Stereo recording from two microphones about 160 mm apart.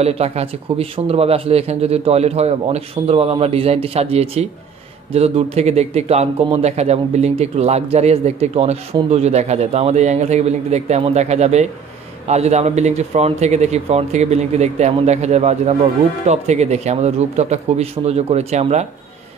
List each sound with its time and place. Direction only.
0.0 s speech: 40° right (ahead or behind)